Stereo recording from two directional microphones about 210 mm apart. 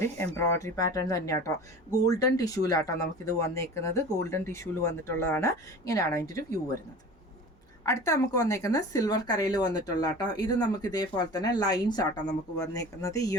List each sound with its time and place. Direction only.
0.0 s speech: 15° left (ahead or behind)
7.9 s speech: 15° left (ahead or behind)